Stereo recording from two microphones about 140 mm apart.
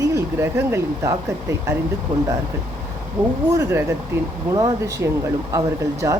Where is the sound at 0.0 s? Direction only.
20° right (ahead or behind).